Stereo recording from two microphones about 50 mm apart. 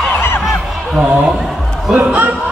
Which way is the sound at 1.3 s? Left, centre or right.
Centre.